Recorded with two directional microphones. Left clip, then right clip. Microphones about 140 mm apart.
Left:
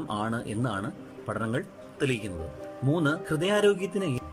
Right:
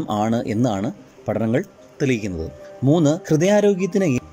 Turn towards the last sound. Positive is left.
turn(degrees=-30)  # may be behind; listen again after turning